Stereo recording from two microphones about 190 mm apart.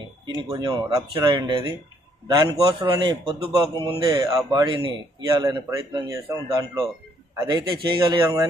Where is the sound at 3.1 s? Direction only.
30° right (ahead or behind).